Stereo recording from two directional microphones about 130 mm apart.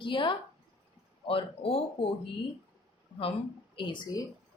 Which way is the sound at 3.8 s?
35° left (ahead or behind).